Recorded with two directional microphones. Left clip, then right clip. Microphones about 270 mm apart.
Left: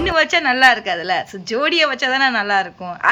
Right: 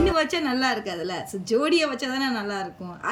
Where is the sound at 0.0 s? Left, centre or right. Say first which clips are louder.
Left 7 dB; centre.